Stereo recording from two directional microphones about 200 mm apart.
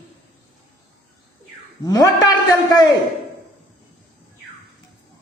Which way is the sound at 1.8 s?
20° left (ahead or behind).